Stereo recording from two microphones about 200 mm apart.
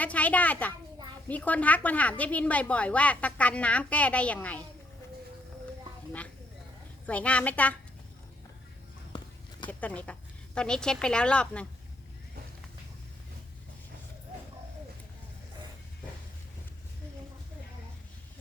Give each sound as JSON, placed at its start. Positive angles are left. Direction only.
{"t": 0.0, "sound": "a child's voice", "side_deg": 5}
{"t": 7.1, "sound": "a woman's voice", "side_deg": 5}
{"t": 9.1, "sound": "a sound", "side_deg": 20}
{"t": 9.6, "sound": "speech", "side_deg": 5}